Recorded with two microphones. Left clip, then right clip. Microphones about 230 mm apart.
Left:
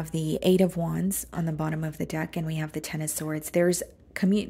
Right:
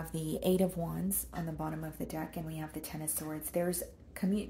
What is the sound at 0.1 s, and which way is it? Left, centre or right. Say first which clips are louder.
Speech: left 8 dB; left.